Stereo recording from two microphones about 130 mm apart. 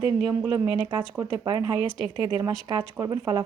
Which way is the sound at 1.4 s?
35° right (ahead or behind).